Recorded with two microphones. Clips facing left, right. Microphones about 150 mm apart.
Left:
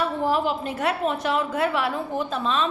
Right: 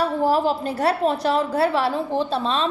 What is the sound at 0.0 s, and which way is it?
A woman's voice, 35° right (ahead or behind).